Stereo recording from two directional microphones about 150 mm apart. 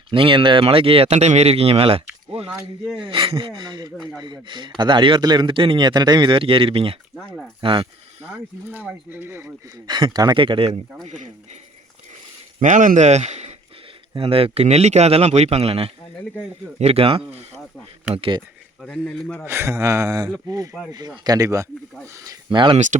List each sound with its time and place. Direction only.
0.1 s speech: 35° right (ahead or behind)
2.5 s speech: 15° right (ahead or behind)
3.1 s speech: 35° right (ahead or behind)
3.9 s a man's voice: 5° left (ahead or behind)
4.2 s speech: 30° right (ahead or behind)
8.3 s speech: 10° right (ahead or behind)
9.7 s speech: 30° right (ahead or behind)
11.0 s speech: 55° right (ahead or behind)
12.5 s speech: 55° right (ahead or behind)
14.1 s speech: 35° right (ahead or behind)
18.8 s a man's voice: 5° left (ahead or behind)
19.5 s speech: 15° right (ahead or behind)
20.7 s a man's voice: 5° left (ahead or behind)
21.2 s speech: 20° right (ahead or behind)